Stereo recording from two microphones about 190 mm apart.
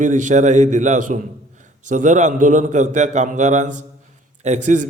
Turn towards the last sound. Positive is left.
turn(degrees=-40)  # may be behind; listen again after turning